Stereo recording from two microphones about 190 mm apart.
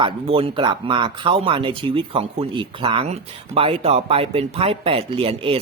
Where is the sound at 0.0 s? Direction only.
30° right (ahead or behind).